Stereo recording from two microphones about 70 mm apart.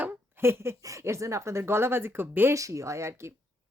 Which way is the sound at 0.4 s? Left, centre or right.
Right.